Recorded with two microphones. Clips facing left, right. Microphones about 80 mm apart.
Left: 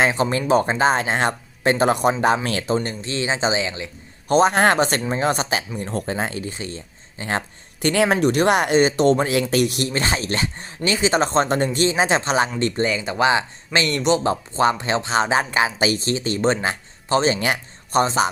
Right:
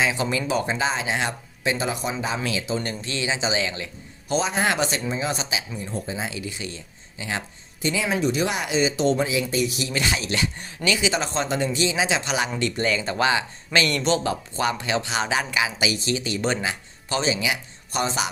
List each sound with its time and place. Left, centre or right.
0.0 s speech: left
2.8 s speech: left
3.6 s speech: left
4.3 s speech: left
7.8 s speech: left
9.9 s speech: left
12.8 s a man's voice: centre; by 18.0 s left
18.0 s speech: left